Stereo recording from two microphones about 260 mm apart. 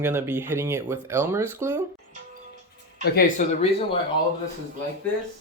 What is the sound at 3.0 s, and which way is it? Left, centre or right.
Speech, left.